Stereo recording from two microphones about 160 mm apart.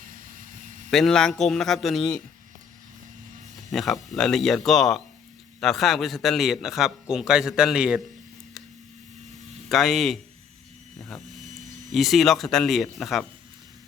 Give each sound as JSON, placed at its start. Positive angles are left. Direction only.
{"t": 0.9, "sound": "a man's voice", "side_deg": 0}
{"t": 3.7, "sound": "a man's voice", "side_deg": 0}
{"t": 9.6, "sound": "a man's voice", "side_deg": 0}
{"t": 10.9, "sound": "vehicle", "side_deg": 0}
{"t": 11.4, "sound": "a sound", "side_deg": -50}
{"t": 11.9, "sound": "a man's voice", "side_deg": 0}